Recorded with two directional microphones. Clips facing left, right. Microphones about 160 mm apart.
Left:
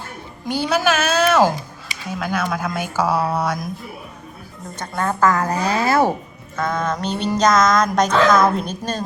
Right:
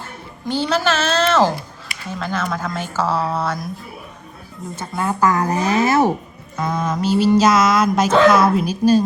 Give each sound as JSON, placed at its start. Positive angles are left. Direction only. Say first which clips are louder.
{"t": 0.4, "sound": "speech", "louder": "even", "side_deg": 10}
{"t": 4.8, "sound": "a woman's voice", "louder": "even", "side_deg": -10}
{"t": 6.6, "sound": "mantra", "louder": "right 1 dB", "side_deg": -10}